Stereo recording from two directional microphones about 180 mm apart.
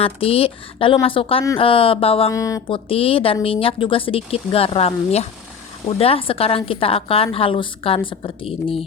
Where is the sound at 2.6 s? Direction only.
30° left (ahead or behind).